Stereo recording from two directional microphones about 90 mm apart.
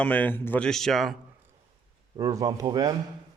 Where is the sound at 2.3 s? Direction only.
40° right (ahead or behind).